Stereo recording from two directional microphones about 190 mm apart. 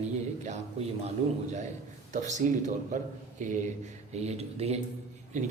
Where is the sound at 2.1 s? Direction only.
40° right (ahead or behind).